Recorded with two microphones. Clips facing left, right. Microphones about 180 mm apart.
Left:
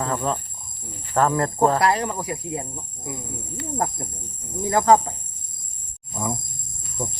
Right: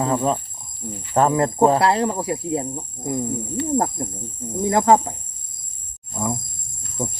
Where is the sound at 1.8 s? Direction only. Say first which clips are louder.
Right 3 dB; 25° right (ahead or behind).